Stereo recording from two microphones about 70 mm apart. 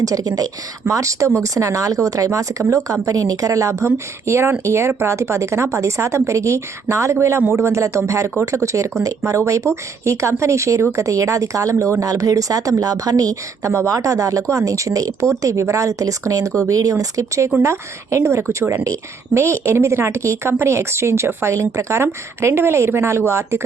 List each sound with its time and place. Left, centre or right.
0.0 s a woman's voice: right